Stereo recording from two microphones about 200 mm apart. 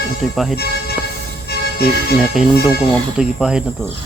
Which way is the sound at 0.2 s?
Centre (ahead or behind).